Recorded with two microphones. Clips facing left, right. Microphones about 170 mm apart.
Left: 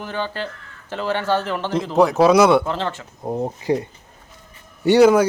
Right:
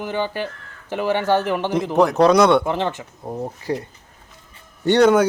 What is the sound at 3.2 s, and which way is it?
Speech, 20° left (ahead or behind).